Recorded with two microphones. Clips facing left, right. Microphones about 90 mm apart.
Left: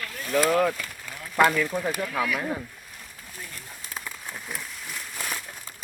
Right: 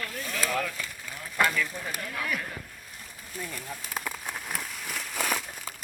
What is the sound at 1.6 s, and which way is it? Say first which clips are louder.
Speech: left 8 dB; 35° left (ahead or behind).